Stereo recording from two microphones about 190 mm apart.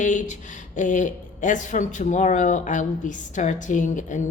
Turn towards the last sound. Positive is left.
turn(degrees=40)  # may be behind; listen again after turning